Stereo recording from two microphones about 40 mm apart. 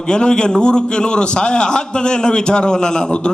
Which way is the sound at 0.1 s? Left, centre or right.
Centre.